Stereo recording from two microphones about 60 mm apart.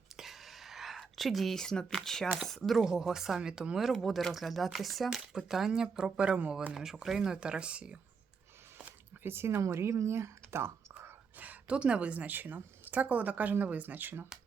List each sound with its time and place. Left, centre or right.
0.2 s a sound: centre
2.6 s speech: centre
6.7 s speech: centre
7.2 s speech: centre
8.8 s a sound: right
9.6 s speech: right
11.3 s a woman's voice: right